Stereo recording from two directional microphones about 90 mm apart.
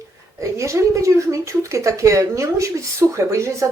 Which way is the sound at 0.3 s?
35° right (ahead or behind).